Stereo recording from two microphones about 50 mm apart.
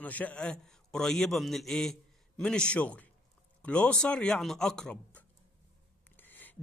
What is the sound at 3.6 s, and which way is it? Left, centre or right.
Speech, left.